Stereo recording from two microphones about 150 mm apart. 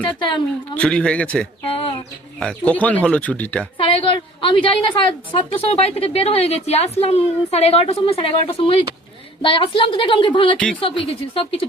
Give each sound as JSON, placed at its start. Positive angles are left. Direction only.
{"t": 0.8, "sound": "speech", "side_deg": 5}
{"t": 1.6, "sound": "bird", "side_deg": 40}
{"t": 2.4, "sound": "speech", "side_deg": 5}
{"t": 3.8, "sound": "a woman's voice", "side_deg": 35}